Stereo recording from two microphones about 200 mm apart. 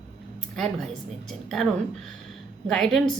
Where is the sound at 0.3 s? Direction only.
Centre (ahead or behind).